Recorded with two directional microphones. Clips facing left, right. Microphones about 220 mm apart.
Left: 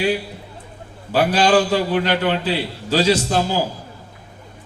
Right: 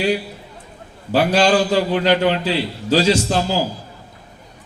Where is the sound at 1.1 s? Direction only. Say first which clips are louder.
Right 1 dB; 45° right (ahead or behind).